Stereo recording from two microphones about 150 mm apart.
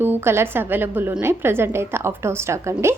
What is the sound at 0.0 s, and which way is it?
A woman's voice, 15° right (ahead or behind).